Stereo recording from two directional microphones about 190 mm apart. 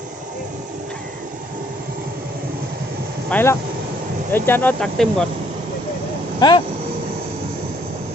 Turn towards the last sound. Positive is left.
turn(degrees=25)  # may be behind; listen again after turning